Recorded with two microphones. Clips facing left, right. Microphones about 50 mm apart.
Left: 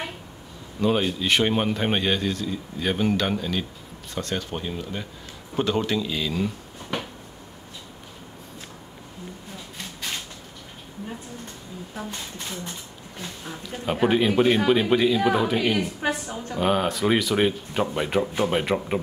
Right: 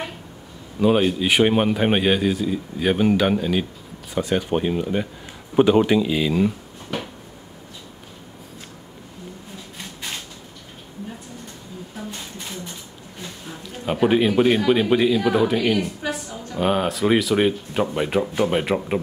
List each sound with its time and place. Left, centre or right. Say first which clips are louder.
0.7 s a man's voice: right 5 dB; centre
14.0 s speech: right 3 dB; centre
16.0 s a sound: left 1 dB; left
16.5 s speech: right 2 dB; centre